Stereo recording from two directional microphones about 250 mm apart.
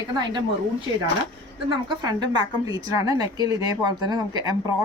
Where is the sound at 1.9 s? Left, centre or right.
Centre.